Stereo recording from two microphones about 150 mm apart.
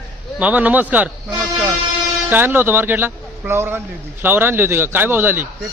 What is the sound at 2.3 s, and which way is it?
Speech, 15° right (ahead or behind).